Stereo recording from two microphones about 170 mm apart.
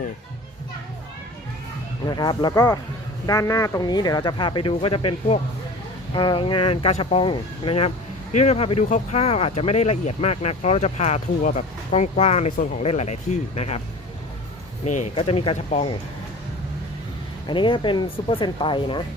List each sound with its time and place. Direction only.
2.0 s speech: 25° left (ahead or behind)
14.8 s speech: 45° left (ahead or behind)
17.5 s speech: 30° left (ahead or behind)